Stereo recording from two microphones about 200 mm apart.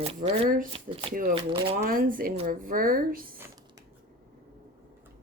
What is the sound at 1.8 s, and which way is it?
A woman's voice, 45° right (ahead or behind).